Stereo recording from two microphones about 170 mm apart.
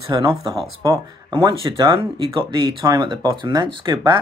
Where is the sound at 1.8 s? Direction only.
30° right (ahead or behind).